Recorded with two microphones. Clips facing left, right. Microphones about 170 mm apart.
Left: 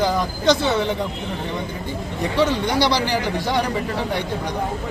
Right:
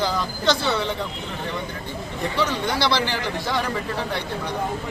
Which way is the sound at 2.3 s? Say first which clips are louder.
Left 5 dB; 20° left (ahead or behind).